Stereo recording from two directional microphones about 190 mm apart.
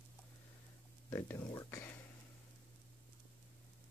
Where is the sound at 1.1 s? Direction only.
15° left (ahead or behind).